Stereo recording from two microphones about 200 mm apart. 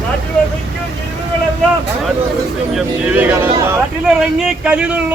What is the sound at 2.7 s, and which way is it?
A man's voice, 5° right (ahead or behind).